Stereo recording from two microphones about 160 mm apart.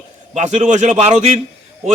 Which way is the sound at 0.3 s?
45° right (ahead or behind).